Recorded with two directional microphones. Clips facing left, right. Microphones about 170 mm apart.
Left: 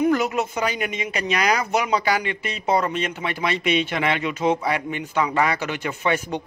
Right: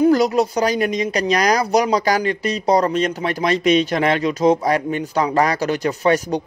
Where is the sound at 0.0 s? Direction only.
35° right (ahead or behind).